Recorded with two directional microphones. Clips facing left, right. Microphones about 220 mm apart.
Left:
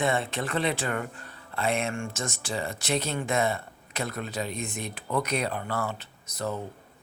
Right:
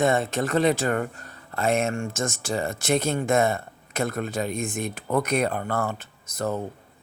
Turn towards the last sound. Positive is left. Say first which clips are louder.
# right 4 dB
turn(degrees=-50)  # may be behind; listen again after turning